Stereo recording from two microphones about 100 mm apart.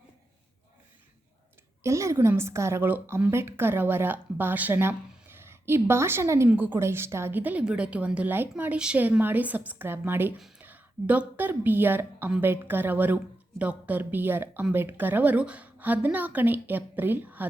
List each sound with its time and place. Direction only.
1.8 s a woman's voice: 30° right (ahead or behind)